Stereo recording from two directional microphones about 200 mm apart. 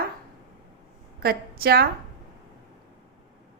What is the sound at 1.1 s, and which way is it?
Speech, 50° right (ahead or behind).